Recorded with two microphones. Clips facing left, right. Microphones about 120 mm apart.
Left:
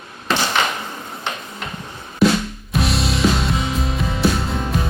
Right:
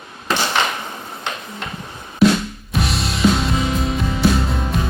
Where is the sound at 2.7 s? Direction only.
Centre (ahead or behind).